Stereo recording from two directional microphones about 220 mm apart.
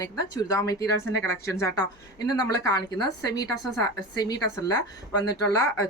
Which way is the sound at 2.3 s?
15° left (ahead or behind).